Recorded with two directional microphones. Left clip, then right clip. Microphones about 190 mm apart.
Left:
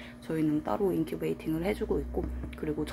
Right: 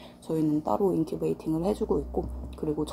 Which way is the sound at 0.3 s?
15° left (ahead or behind).